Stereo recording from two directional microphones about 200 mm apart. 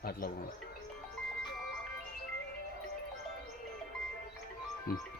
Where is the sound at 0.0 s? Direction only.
50° left (ahead or behind).